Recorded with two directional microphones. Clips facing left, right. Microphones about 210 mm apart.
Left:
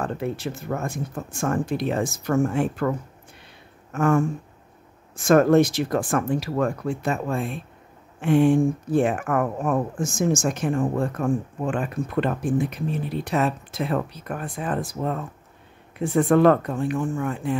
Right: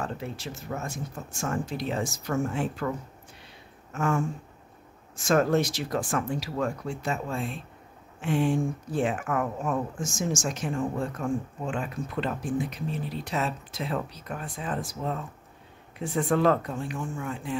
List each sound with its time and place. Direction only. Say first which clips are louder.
0.0 s speech: left 7 dB; 55° left (ahead or behind)
3.9 s a sound: left 7 dB; 55° left (ahead or behind)
5.1 s speech: left 7 dB; 55° left (ahead or behind)